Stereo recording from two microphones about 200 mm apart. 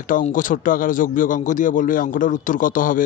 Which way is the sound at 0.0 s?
40° left (ahead or behind).